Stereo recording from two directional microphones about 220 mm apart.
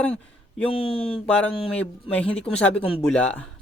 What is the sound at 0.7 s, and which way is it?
Speech, 25° left (ahead or behind).